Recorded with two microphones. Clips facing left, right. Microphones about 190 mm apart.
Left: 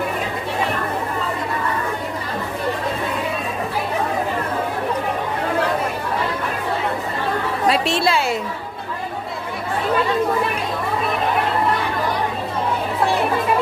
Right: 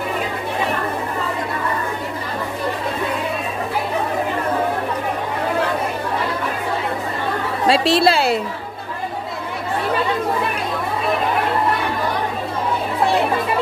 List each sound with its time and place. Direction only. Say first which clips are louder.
7.6 s chatter: right 5 dB; 30° right (ahead or behind)